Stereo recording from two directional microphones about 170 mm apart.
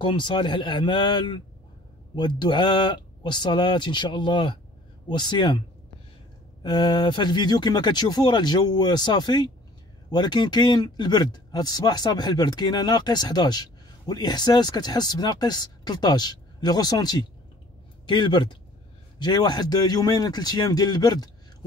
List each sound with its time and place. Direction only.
0.0 s speech: 30° left (ahead or behind)
6.6 s speech: 25° left (ahead or behind)